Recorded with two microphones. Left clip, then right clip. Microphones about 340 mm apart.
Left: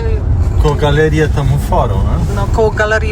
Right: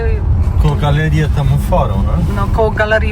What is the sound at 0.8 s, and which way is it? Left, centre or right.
Speech, left.